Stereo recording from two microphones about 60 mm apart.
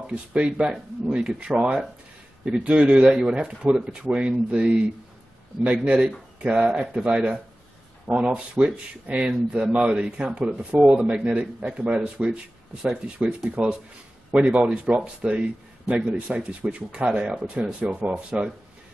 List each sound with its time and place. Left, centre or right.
0.0 s a man's voice: centre